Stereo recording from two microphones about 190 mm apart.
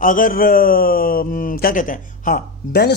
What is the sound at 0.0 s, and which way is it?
Speech, 45° left (ahead or behind).